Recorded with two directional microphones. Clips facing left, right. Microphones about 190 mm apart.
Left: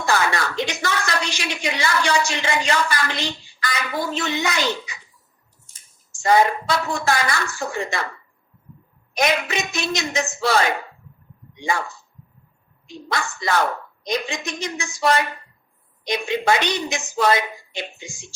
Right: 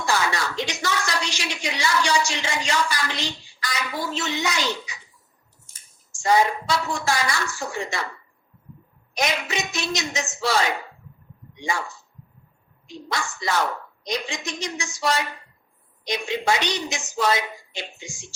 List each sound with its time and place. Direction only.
0.0 s a woman's voice: 55° left (ahead or behind)
6.2 s speech: 55° left (ahead or behind)
9.1 s speech: 55° left (ahead or behind)
13.1 s speech: 55° left (ahead or behind)